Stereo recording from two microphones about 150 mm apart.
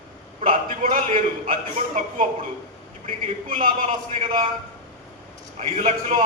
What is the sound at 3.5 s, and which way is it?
Speech, 65° right (ahead or behind).